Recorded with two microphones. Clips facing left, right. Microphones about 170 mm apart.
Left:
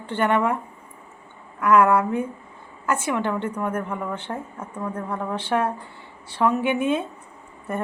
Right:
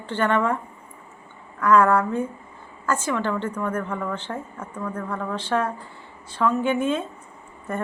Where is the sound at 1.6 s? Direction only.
10° left (ahead or behind).